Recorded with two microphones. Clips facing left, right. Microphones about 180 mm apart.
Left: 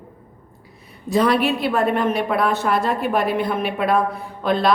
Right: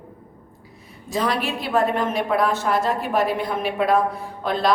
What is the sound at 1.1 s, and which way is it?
A woman's voice, 60° left (ahead or behind).